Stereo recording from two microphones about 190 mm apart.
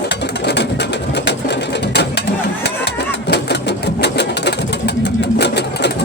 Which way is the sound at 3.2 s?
65° left (ahead or behind).